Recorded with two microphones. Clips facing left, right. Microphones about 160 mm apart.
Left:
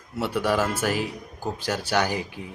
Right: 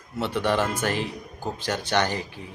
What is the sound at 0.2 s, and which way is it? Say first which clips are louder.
A man's voice: even; 10° left (ahead or behind).